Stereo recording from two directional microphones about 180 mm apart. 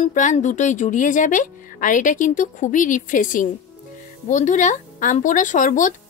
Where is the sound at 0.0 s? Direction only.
45° left (ahead or behind).